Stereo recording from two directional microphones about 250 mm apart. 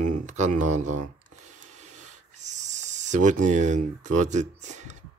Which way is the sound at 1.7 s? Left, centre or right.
Right.